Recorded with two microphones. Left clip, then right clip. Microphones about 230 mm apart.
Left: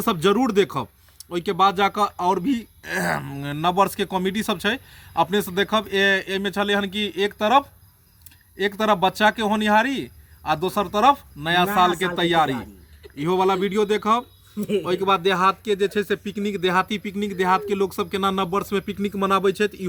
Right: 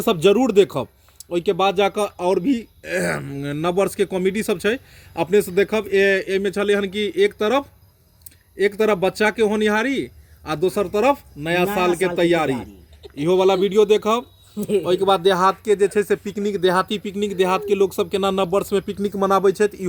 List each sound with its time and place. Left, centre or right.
0.0 s speech: centre
15.0 s speech: left
16.7 s speech: centre
19.3 s speech: left